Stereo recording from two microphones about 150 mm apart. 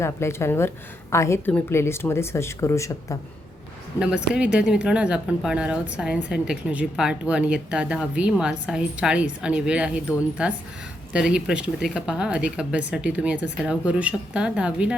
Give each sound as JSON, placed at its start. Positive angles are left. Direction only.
{"t": 0.0, "sound": "a woman's voice", "side_deg": 15}
{"t": 4.0, "sound": "speech", "side_deg": -5}